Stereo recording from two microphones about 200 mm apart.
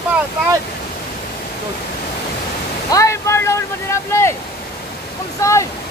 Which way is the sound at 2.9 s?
15° left (ahead or behind).